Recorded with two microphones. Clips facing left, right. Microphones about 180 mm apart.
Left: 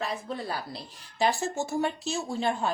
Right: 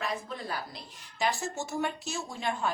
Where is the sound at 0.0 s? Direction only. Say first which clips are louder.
Left 2 dB; 30° left (ahead or behind).